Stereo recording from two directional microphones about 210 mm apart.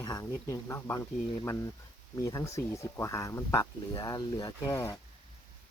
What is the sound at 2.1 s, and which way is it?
Speech, 15° left (ahead or behind).